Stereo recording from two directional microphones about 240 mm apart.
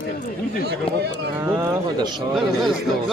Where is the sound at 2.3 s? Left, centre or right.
Centre.